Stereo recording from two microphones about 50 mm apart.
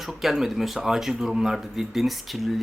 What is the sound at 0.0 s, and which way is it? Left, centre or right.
Speech, centre.